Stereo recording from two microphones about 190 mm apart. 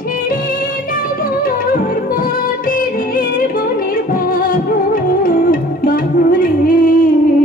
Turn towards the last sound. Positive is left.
turn(degrees=50)  # may be behind; listen again after turning